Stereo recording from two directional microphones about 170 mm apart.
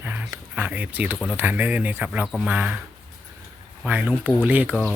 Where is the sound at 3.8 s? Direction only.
10° right (ahead or behind).